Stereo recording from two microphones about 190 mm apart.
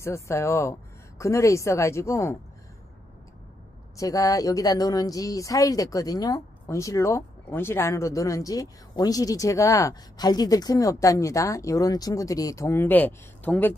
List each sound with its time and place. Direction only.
0.0 s speech: 15° left (ahead or behind)
3.9 s speech: 15° left (ahead or behind)